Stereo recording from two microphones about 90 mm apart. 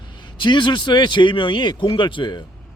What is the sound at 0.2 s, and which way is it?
A man's voice, 60° left (ahead or behind).